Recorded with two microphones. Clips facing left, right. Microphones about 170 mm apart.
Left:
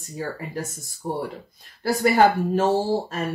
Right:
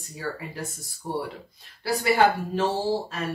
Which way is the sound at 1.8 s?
45° left (ahead or behind).